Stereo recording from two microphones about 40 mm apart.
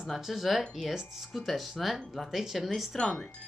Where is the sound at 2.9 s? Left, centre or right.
Centre.